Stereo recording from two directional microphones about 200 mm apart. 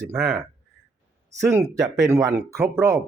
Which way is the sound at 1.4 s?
15° right (ahead or behind).